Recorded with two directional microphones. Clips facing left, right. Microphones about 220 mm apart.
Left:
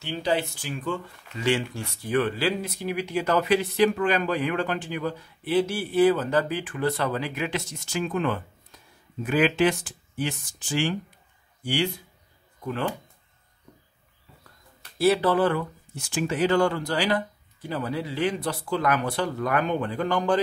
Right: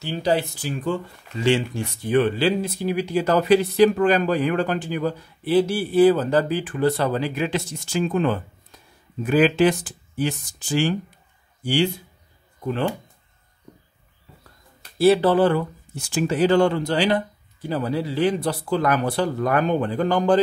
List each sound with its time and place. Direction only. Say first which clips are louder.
0.0 s a man's voice: right 4 dB; 40° right (ahead or behind)
15.0 s speech: right 5 dB; 30° right (ahead or behind)